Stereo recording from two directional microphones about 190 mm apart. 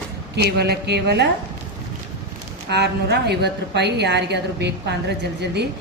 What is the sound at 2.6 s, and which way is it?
A woman's voice, 60° right (ahead or behind).